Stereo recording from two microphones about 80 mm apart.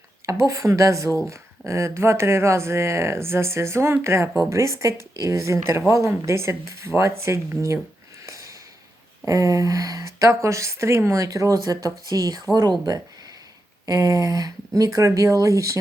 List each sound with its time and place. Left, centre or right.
0.3 s speech: right
8.3 s a sound: right
9.2 s a woman's voice: right
13.8 s a woman's voice: right